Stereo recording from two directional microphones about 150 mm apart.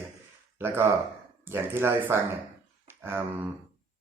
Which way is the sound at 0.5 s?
15° right (ahead or behind).